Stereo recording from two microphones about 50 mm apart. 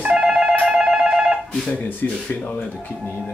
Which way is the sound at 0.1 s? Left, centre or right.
Centre.